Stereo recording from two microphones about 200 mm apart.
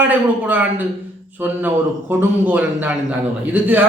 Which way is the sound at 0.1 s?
5° right (ahead or behind).